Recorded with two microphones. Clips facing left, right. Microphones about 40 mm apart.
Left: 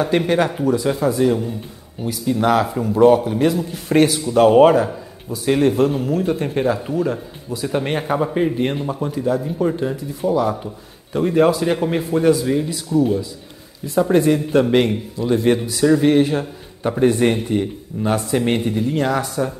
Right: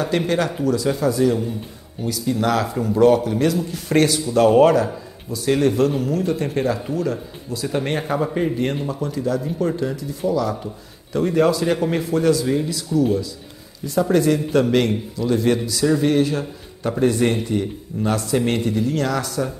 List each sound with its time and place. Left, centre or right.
0.3 s a man's voice: left
8.8 s a man's voice: left
9.4 s speech: centre
9.8 s a man's voice: left
14.1 s a man's voice: centre